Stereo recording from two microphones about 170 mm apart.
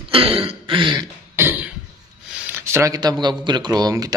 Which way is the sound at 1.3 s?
10° right (ahead or behind).